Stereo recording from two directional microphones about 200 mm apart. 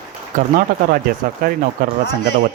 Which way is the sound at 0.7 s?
45° right (ahead or behind).